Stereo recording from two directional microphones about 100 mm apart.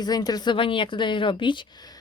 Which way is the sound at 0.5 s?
60° left (ahead or behind).